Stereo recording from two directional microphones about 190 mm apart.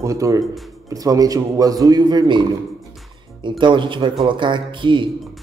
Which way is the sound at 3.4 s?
25° right (ahead or behind).